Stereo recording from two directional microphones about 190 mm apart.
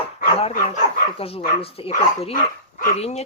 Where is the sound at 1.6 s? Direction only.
30° left (ahead or behind).